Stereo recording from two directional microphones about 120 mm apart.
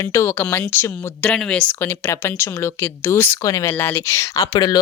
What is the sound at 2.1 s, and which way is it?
Speech, 20° left (ahead or behind).